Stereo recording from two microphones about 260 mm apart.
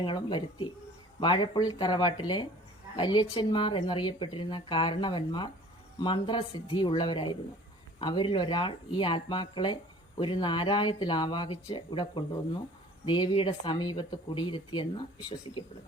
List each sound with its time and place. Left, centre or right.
0.0 s speech: centre